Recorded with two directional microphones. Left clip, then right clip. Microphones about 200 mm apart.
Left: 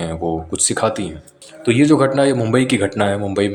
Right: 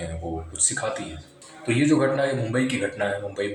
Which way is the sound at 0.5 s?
30° left (ahead or behind).